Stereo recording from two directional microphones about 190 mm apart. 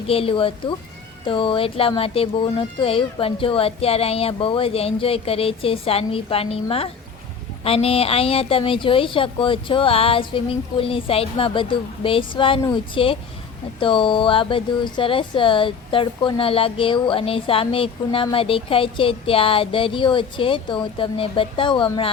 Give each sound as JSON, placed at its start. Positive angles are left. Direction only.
{"t": 0.1, "sound": "speech", "side_deg": 30}